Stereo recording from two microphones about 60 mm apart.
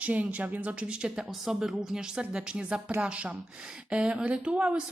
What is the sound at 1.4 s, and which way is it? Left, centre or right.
A woman's voice, centre.